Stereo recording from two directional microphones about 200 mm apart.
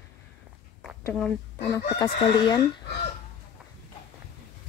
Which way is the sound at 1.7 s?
20° left (ahead or behind).